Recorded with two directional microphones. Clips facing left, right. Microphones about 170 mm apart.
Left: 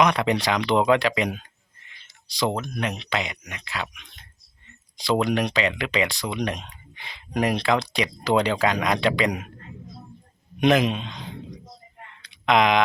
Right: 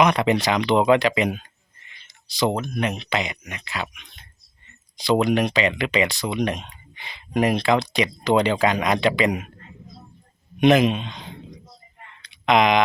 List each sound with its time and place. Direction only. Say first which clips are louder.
0.0 s speech: right 2 dB; 5° right (ahead or behind)
10.6 s speech: right 3 dB; centre (ahead or behind)
12.3 s speech: right 2 dB; centre (ahead or behind)